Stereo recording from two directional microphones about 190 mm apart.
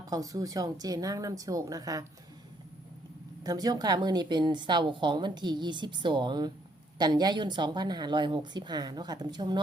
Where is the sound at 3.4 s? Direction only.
20° right (ahead or behind).